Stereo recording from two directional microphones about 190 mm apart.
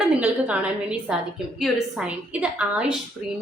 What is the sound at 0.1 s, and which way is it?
A woman's voice, 5° right (ahead or behind).